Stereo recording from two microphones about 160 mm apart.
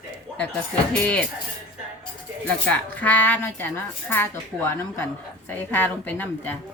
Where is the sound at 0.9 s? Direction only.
5° left (ahead or behind).